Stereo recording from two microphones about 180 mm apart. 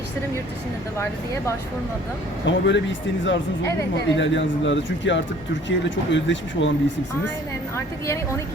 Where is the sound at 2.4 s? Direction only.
90° left.